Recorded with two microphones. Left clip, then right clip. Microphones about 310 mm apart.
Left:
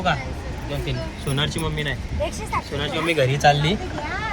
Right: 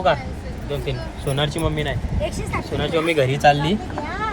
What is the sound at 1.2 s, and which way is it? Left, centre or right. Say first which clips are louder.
Speech: right 3 dB; centre.